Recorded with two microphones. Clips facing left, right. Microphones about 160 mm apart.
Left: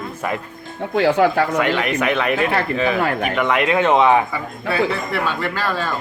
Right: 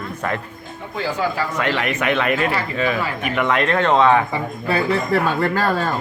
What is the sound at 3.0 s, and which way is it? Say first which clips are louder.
Speech: left 4 dB; 55° left (ahead or behind).